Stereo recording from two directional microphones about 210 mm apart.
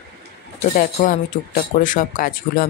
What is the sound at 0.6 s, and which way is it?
Speech, 35° left (ahead or behind).